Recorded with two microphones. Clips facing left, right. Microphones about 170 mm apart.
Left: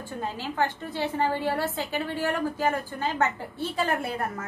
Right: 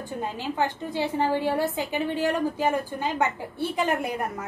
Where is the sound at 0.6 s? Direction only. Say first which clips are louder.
Right 1 dB; 15° right (ahead or behind).